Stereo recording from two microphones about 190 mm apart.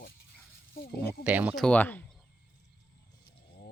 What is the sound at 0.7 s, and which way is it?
Speech, 50° left (ahead or behind).